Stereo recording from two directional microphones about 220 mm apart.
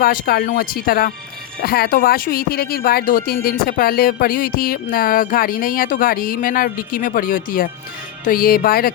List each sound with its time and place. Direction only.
0.0 s speech: 45° left (ahead or behind)